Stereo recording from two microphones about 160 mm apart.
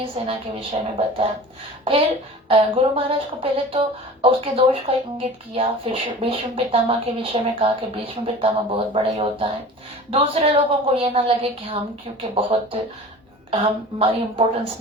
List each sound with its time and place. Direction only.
0.2 s a woman's voice: 40° right (ahead or behind)